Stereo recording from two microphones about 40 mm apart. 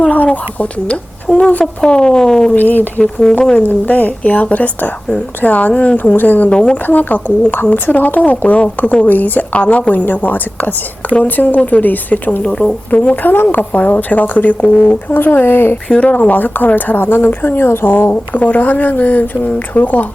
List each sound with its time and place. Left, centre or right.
0.6 s speech: left
2.6 s speech: left
3.0 s speech: centre
3.8 s speech: left
6.5 s speech: left
6.8 s speech: left
9.6 s speech: left
12.4 s speech: left
12.9 s speech: left
13.3 s speech: left
13.6 s speech: left
15.9 s speech: left
17.8 s speech: left